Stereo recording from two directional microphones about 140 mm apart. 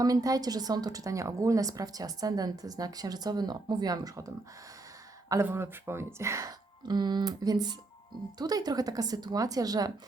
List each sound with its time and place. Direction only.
0.0 s a woman's voice: 25° right (ahead or behind)
5.3 s a woman's voice: 20° right (ahead or behind)